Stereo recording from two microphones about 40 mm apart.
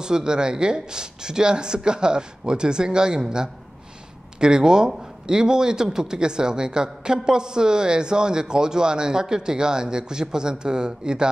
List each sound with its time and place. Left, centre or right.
0.0 s speech: centre